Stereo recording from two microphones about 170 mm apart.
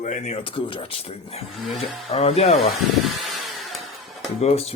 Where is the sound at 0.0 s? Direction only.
40° left (ahead or behind).